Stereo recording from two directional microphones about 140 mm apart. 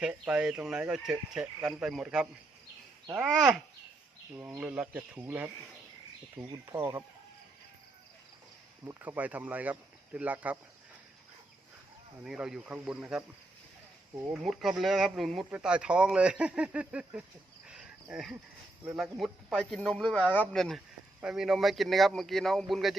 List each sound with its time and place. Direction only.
0.0 s speech: 5° right (ahead or behind)
4.4 s speech: 10° right (ahead or behind)
6.7 s speech: 20° right (ahead or behind)
8.8 s speech: 15° right (ahead or behind)
12.2 s speech: 5° right (ahead or behind)
14.4 s speech: centre (ahead or behind)
17.7 s cricket: 5° right (ahead or behind)
18.9 s speech: centre (ahead or behind)